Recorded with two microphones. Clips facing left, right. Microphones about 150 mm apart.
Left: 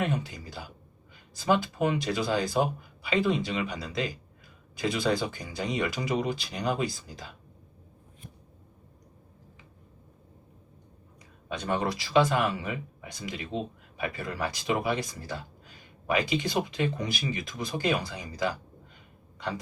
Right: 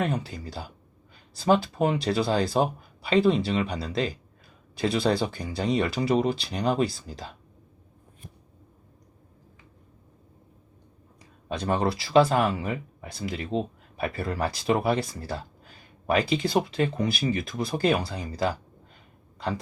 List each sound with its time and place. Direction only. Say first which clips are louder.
0.0 s speech: right 2 dB; 35° right (ahead or behind)
11.4 s speech: right 4 dB; 35° right (ahead or behind)
16.4 s speech: right 4 dB; 35° right (ahead or behind)